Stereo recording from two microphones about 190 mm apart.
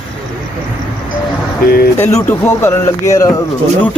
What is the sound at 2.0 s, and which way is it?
Speech, 15° left (ahead or behind).